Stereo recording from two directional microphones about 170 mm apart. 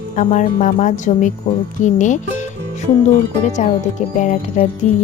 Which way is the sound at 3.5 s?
45° left (ahead or behind).